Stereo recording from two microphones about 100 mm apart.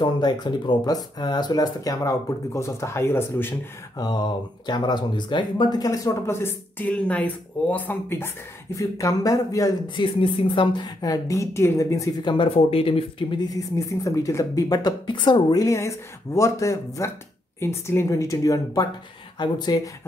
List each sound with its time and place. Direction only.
0.0 s speech: 45° left (ahead or behind); by 3.5 s 25° left (ahead or behind)
4.0 s speech: 40° left (ahead or behind); by 8.3 s 20° left (ahead or behind)
8.7 s speech: 35° left (ahead or behind)
9.9 s speech: 55° left (ahead or behind); by 12.1 s 30° left (ahead or behind)
12.3 s speech: 65° left (ahead or behind)
13.4 s speech: 35° left (ahead or behind)
15.6 s speech: 30° left (ahead or behind)